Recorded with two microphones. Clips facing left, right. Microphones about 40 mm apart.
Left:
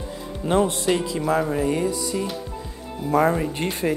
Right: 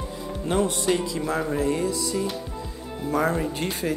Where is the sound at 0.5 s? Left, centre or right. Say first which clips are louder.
Left 3 dB; centre.